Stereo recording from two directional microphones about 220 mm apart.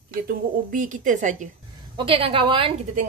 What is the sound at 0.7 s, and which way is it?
A woman's voice, 35° right (ahead or behind).